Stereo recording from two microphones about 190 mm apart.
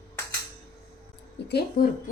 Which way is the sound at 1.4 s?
60° left (ahead or behind).